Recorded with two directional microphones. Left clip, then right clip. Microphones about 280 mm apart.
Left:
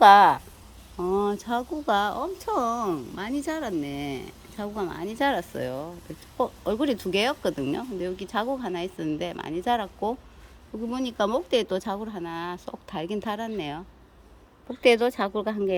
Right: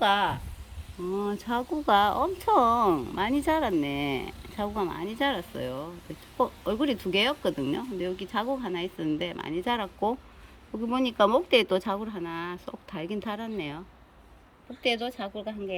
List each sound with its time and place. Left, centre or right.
0.0 s speech: left
1.1 s speech: centre
14.8 s speech: centre